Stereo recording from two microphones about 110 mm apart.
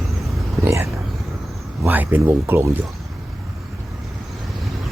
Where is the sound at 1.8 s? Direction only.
15° right (ahead or behind).